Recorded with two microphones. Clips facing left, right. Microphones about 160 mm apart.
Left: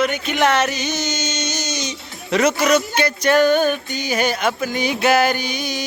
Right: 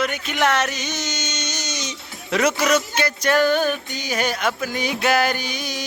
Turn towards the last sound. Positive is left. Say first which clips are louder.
# left 4 dB
turn(degrees=0)  # may be behind; listen again after turning